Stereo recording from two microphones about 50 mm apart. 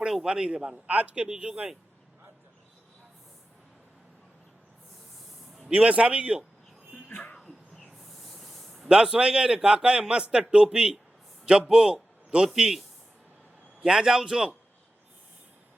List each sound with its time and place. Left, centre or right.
0.0 s a sound: centre
0.3 s a man's voice: centre
5.7 s a man's voice: right
7.3 s snake: centre
8.9 s a man's voice: centre
13.8 s a man's voice: centre